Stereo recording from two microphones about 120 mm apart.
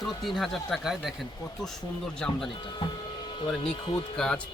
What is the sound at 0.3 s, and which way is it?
Speech, centre (ahead or behind).